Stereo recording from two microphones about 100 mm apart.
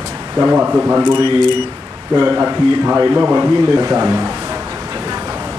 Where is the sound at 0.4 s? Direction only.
20° right (ahead or behind).